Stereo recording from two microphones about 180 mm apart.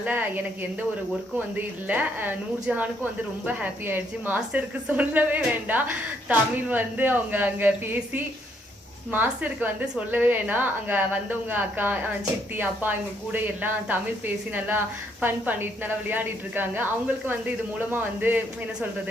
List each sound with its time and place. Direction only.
0.0 s speech: 10° right (ahead or behind)
1.5 s speech: 10° right (ahead or behind)
9.1 s speech: 10° right (ahead or behind)
15.2 s speech: 10° right (ahead or behind)